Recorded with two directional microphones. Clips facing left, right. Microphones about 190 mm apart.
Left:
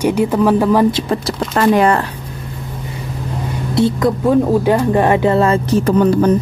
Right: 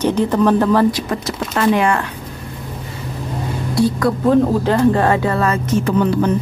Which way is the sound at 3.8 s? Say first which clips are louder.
Left 2 dB; 20° left (ahead or behind).